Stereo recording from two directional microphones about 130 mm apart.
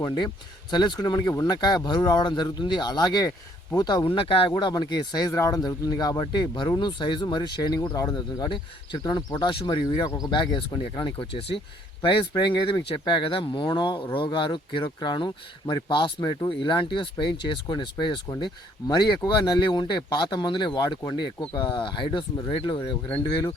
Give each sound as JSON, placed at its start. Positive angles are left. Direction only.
{"t": 0.0, "sound": "speech", "side_deg": 30}
{"t": 4.0, "sound": "speech", "side_deg": 45}